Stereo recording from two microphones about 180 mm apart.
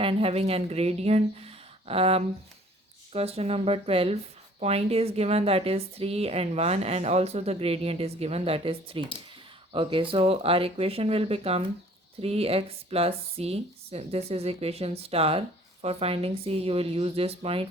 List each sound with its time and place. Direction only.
0.0 s speech: 30° right (ahead or behind)